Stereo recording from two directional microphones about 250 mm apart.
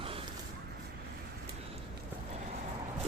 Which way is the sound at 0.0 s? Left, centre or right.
Right.